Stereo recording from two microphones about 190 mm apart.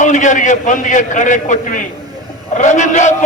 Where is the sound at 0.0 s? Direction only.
40° left (ahead or behind).